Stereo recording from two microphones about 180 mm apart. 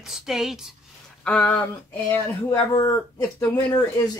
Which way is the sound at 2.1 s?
20° left (ahead or behind).